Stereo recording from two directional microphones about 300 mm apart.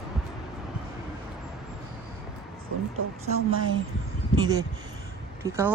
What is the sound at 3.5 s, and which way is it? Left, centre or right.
Speech, right.